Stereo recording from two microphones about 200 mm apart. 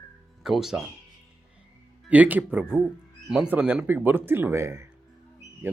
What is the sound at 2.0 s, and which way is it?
Speech, 5° right (ahead or behind).